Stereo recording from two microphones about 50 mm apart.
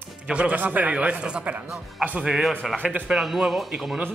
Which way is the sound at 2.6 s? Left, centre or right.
Centre.